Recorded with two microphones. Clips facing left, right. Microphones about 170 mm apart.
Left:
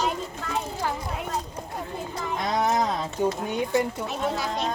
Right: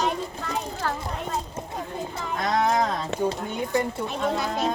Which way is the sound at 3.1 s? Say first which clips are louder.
Even; 90° right.